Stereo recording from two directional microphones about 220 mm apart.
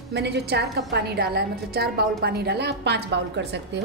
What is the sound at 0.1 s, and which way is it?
A woman's voice, 50° right (ahead or behind).